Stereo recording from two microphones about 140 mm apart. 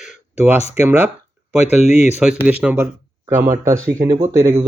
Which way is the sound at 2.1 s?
10° right (ahead or behind).